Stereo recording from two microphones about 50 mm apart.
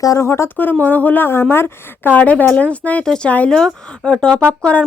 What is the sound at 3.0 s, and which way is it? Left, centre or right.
Speech, centre.